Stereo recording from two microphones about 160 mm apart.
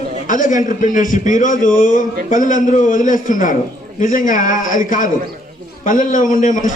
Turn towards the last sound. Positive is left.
turn(degrees=55)  # may be behind; listen again after turning